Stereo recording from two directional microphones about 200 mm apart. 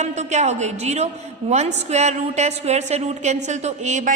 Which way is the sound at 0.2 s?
35° right (ahead or behind).